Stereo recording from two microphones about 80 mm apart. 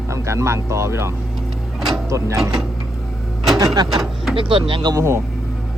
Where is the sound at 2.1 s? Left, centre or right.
Right.